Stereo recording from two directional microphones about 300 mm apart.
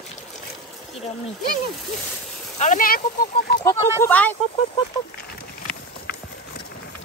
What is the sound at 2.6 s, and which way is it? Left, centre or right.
Speech, left.